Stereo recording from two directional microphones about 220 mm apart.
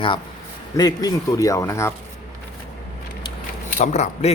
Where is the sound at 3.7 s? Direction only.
30° left (ahead or behind).